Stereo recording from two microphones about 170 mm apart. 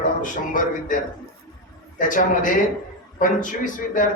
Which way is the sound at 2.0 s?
50° left (ahead or behind).